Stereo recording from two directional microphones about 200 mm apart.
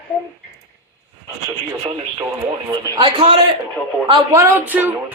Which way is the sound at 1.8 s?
20° right (ahead or behind).